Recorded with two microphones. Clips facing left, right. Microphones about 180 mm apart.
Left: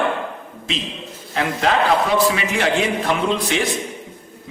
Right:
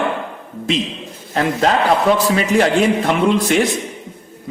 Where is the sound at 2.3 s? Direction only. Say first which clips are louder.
Right 6 dB; 40° right (ahead or behind).